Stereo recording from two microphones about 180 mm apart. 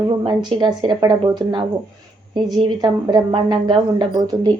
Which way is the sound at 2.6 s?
20° right (ahead or behind).